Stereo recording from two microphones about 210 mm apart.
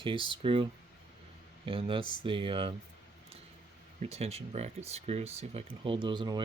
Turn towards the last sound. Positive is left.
turn(degrees=-20)  # may be behind; listen again after turning